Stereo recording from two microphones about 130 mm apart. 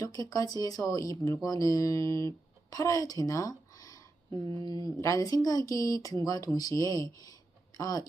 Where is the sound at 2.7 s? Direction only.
25° left (ahead or behind).